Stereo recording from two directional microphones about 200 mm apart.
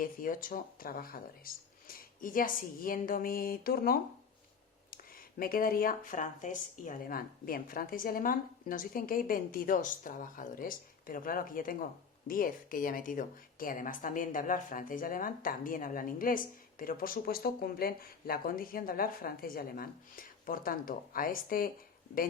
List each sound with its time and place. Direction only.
0.0 s speech: 45° left (ahead or behind)
5.4 s speech: 45° left (ahead or behind)